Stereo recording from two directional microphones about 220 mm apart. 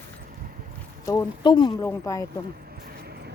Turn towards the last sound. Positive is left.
turn(degrees=-45)  # may be behind; listen again after turning